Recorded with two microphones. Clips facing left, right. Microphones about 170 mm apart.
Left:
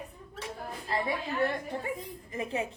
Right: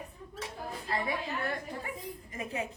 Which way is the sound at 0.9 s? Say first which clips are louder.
Left 2 dB; 25° left (ahead or behind).